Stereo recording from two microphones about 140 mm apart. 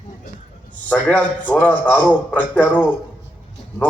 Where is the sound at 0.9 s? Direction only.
10° left (ahead or behind).